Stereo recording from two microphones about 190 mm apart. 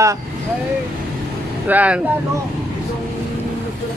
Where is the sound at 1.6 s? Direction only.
10° right (ahead or behind).